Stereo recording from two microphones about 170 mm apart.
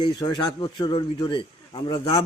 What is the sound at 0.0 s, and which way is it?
A man's voice, 25° left (ahead or behind).